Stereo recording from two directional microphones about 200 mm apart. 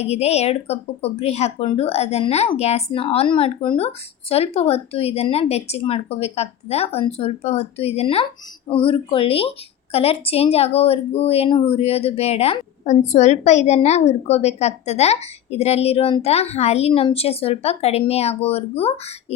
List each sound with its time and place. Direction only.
0.0 s a woman's voice: 30° left (ahead or behind)